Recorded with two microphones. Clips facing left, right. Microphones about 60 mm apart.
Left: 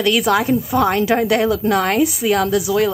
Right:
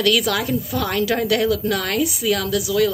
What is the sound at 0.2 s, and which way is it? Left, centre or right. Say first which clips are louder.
A woman's voice: left 6 dB; left.